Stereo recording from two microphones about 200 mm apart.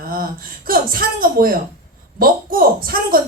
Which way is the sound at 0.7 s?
45° right (ahead or behind).